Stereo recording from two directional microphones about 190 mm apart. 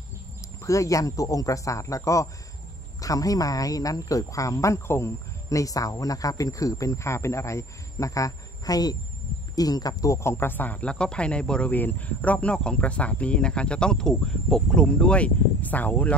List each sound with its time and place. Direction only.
0.7 s speech: 15° left (ahead or behind)